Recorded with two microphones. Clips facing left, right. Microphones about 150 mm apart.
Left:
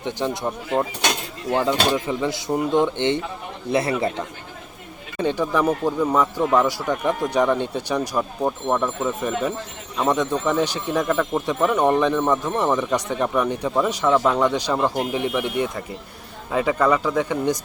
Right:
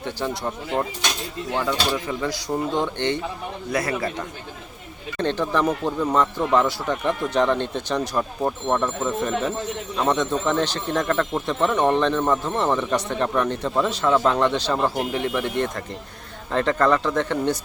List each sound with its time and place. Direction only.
0.0 s speech: 20° left (ahead or behind)
5.1 s speech: 10° left (ahead or behind)